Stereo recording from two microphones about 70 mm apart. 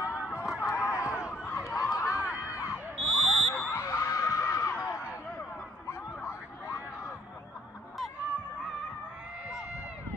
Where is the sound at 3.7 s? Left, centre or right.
Left.